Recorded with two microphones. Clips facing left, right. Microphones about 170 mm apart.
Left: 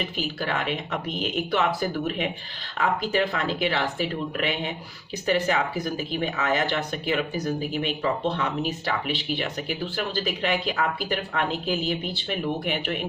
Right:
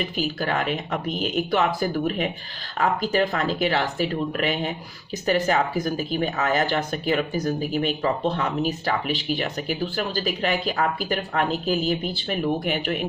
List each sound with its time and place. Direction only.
0.2 s speech: 40° right (ahead or behind)